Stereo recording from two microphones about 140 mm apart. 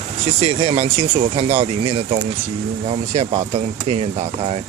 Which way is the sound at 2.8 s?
55° right (ahead or behind).